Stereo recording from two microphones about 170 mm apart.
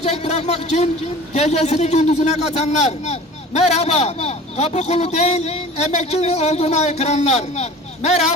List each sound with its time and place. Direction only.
0.0 s a man's voice: 40° left (ahead or behind)